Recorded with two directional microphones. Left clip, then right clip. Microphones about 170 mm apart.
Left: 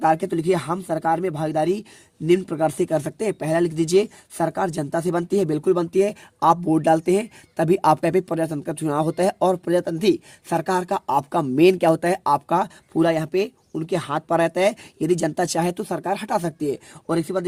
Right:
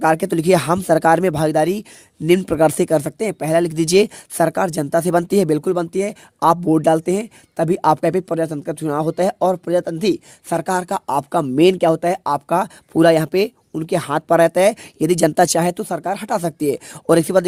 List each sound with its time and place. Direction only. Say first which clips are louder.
0.0 s speech: right 3 dB; 55° right (ahead or behind)
5.7 s speech: even; 35° right (ahead or behind); by 17.0 s 50° right (ahead or behind)
17.1 s speech: right 9 dB; 70° right (ahead or behind)